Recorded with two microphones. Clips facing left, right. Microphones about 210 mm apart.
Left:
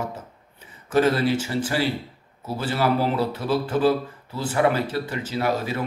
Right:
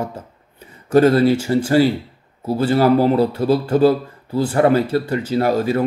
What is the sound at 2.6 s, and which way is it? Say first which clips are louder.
Speech: right 8 dB; 40° right (ahead or behind).